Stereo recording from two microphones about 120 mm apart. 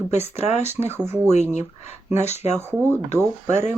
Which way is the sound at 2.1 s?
65° left (ahead or behind).